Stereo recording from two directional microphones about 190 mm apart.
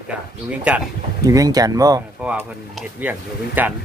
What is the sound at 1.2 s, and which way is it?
Speech, 20° right (ahead or behind).